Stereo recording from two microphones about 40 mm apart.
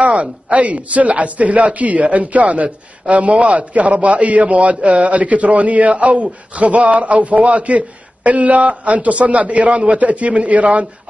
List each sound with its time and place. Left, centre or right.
0.0 s a man's voice: right